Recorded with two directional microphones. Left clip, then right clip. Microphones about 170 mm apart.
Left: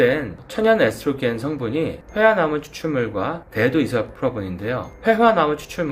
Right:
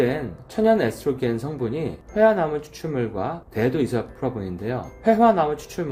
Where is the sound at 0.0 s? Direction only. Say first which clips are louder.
Left 5 dB; 40° right (ahead or behind).